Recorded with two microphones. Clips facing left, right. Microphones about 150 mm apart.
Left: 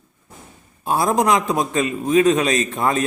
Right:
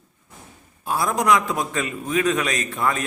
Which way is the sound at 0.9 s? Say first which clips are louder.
Left 3 dB; 25° left (ahead or behind).